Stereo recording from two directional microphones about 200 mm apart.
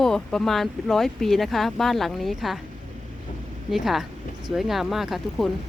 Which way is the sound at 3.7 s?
Centre (ahead or behind).